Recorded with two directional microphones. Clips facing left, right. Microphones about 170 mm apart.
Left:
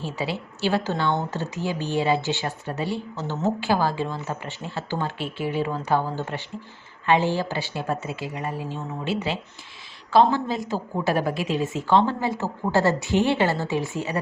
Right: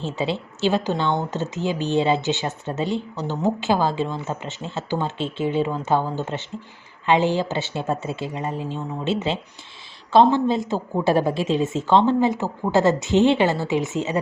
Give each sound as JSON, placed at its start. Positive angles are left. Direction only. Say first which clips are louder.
{"t": 0.0, "sound": "speech", "louder": "right 4 dB", "side_deg": -25}